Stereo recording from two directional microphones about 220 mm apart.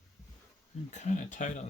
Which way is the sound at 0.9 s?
35° left (ahead or behind).